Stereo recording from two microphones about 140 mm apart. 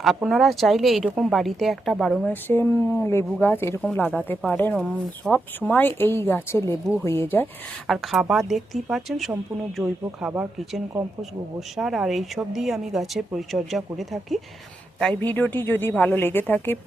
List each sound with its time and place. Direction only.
0.0 s speech: centre (ahead or behind)
2.3 s a woman's voice: 15° left (ahead or behind)
7.9 s speech: 5° right (ahead or behind)
11.8 s a woman's voice: centre (ahead or behind); by 16.7 s 15° left (ahead or behind)